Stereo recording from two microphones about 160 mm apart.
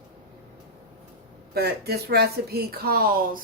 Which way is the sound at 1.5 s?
80° right.